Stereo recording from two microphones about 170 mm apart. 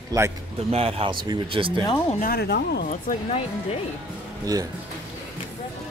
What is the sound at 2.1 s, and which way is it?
Speech, 60° left (ahead or behind).